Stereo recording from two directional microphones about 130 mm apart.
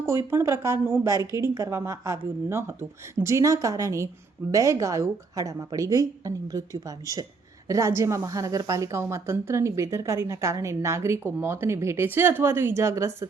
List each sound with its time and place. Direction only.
0.3 s a woman's voice: 20° right (ahead or behind)